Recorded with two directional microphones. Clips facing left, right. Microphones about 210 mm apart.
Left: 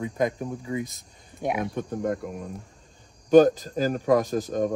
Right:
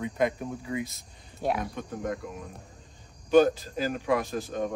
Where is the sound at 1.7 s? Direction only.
50° left (ahead or behind).